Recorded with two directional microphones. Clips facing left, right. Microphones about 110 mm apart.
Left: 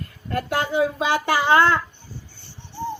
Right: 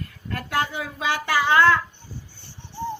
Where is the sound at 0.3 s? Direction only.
25° left (ahead or behind).